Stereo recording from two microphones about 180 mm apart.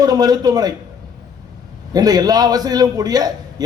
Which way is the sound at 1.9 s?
20° right (ahead or behind).